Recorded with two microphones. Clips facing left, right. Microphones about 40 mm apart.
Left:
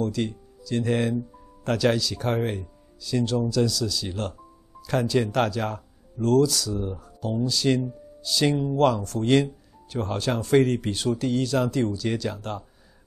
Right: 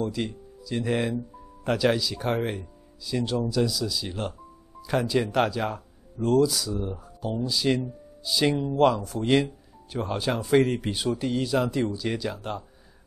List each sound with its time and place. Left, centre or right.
0.0 s a man's voice: centre